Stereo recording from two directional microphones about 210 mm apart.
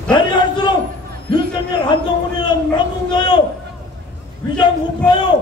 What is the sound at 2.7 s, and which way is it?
Speech, 20° left (ahead or behind).